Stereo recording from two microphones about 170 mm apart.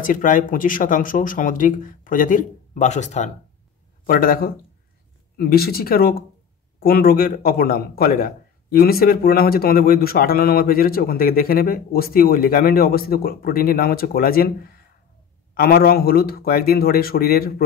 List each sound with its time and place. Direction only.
0.0 s speech: 50° left (ahead or behind)
4.0 s a man's voice: 60° left (ahead or behind)
15.5 s a man's voice: 65° left (ahead or behind)